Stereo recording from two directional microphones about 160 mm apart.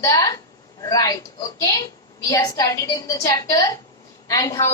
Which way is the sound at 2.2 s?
20° left (ahead or behind).